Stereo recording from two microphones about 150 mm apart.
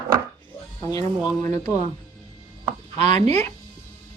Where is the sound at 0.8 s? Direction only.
20° left (ahead or behind).